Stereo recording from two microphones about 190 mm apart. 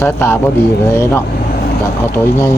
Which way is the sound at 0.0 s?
10° left (ahead or behind).